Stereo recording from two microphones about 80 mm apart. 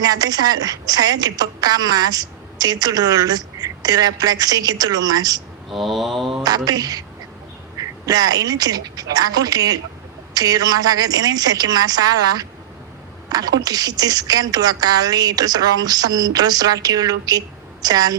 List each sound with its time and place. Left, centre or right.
0.0 s a woman's voice: right
5.7 s mantra: centre
6.7 s a woman's voice: right